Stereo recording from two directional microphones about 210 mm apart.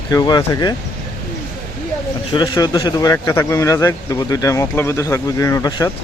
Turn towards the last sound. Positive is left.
turn(degrees=15)  # may be behind; listen again after turning